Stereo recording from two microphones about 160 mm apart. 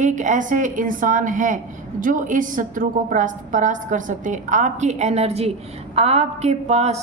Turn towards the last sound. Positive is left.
turn(degrees=-40)  # may be behind; listen again after turning